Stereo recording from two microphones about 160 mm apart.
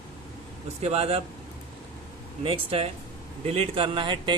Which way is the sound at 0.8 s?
40° right (ahead or behind).